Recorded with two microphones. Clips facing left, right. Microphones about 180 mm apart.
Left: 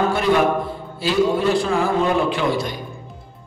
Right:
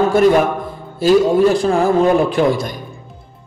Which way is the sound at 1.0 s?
45° right (ahead or behind).